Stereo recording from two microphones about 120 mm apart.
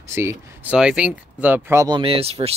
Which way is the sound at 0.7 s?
10° right (ahead or behind).